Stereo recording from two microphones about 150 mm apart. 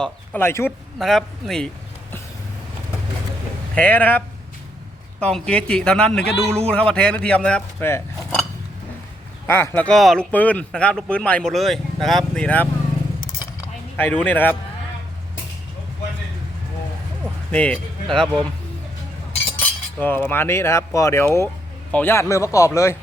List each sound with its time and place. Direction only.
0.0 s speech: 15° left (ahead or behind)
0.9 s a man's voice: centre (ahead or behind)
3.8 s speech: 10° left (ahead or behind)
5.2 s speech: 5° left (ahead or behind)
9.5 s speech: 15° left (ahead or behind)
13.9 s speech: 15° left (ahead or behind)
17.5 s speech: 10° left (ahead or behind)
19.5 s cutlery: 10° left (ahead or behind)
21.9 s a man's voice: 15° left (ahead or behind)